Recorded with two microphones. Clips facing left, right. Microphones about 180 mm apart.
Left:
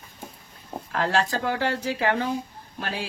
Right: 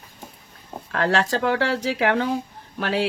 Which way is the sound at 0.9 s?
75° right (ahead or behind).